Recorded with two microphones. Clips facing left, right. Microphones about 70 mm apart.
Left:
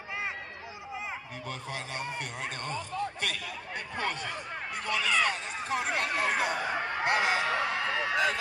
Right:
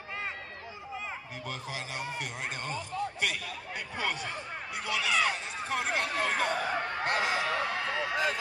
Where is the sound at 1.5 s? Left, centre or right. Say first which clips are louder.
Left 1 dB; centre.